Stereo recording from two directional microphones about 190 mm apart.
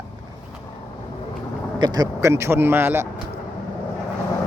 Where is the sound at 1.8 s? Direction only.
20° right (ahead or behind).